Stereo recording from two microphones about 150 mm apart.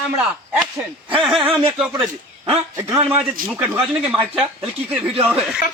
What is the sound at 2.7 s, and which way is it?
Speech, 15° right (ahead or behind).